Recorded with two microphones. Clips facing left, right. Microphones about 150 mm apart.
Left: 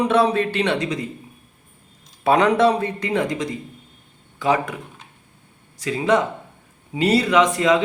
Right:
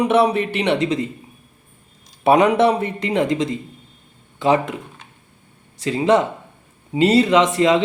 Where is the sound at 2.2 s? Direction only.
20° right (ahead or behind).